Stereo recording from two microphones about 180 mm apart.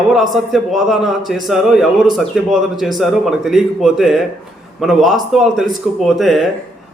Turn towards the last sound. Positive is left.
turn(degrees=0)  # may be behind; listen again after turning